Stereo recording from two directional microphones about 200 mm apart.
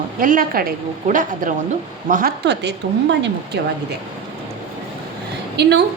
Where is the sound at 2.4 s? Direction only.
60° right (ahead or behind).